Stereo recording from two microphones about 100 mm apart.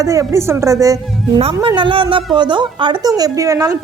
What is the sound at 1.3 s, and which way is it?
A woman's voice, 55° right (ahead or behind).